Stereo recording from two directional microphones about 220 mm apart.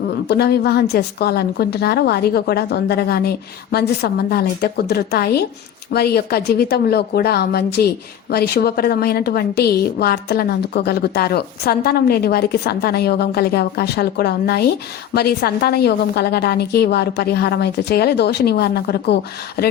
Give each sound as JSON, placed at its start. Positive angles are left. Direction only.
{"t": 0.3, "sound": "a woman's voice", "side_deg": 45}